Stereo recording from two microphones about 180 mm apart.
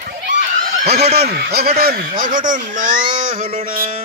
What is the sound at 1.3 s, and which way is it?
Speech, 60° right (ahead or behind).